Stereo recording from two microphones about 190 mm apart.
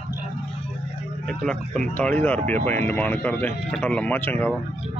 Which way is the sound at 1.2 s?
5° left (ahead or behind).